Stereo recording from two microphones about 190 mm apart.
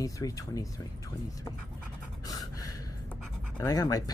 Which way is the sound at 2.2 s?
20° left (ahead or behind).